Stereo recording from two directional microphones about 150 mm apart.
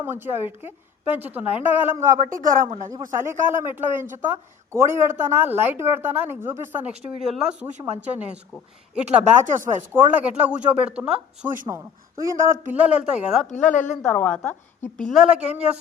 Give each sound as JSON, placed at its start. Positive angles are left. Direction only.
{"t": 0.0, "sound": "speech", "side_deg": -15}
{"t": 2.2, "sound": "speech", "side_deg": -60}
{"t": 3.2, "sound": "speech", "side_deg": -15}
{"t": 7.2, "sound": "a woman's voice", "side_deg": 0}
{"t": 9.0, "sound": "speech", "side_deg": -15}
{"t": 11.7, "sound": "speech", "side_deg": -20}
{"t": 14.0, "sound": "a woman's voice", "side_deg": 10}
{"t": 14.9, "sound": "a woman's voice", "side_deg": 0}